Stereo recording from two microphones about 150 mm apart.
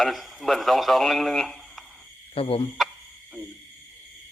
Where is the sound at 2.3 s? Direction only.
40° left (ahead or behind).